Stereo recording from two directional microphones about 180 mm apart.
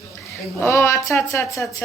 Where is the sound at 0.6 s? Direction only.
15° left (ahead or behind).